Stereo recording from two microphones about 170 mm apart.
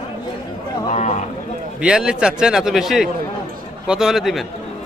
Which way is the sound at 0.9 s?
40° left (ahead or behind).